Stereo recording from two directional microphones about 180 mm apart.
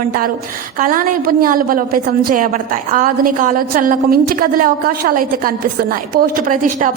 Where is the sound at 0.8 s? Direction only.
50° right (ahead or behind).